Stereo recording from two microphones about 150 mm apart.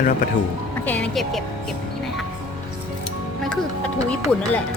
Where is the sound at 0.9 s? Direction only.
5° left (ahead or behind).